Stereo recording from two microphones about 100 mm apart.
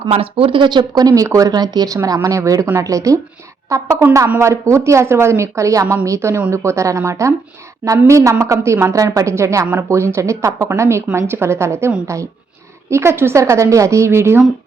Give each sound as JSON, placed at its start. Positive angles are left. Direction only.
{"t": 0.1, "sound": "speech", "side_deg": -70}